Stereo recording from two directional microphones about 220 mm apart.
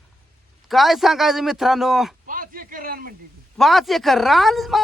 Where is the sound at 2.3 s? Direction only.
40° right (ahead or behind).